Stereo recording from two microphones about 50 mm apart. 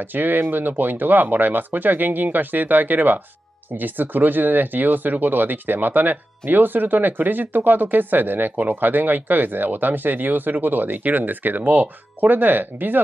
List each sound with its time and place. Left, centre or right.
0.0 s speech: right